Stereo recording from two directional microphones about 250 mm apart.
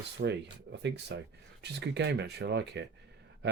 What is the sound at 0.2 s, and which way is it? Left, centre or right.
Speech, right.